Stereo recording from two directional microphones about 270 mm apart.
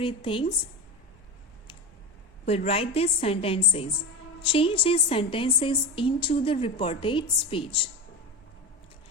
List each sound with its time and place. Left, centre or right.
0.0 s a woman's voice: centre
2.5 s a woman's voice: left